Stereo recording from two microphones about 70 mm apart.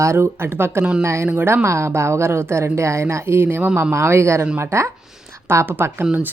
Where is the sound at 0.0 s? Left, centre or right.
Right.